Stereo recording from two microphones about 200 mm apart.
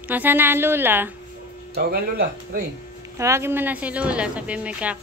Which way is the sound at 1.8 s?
50° right (ahead or behind).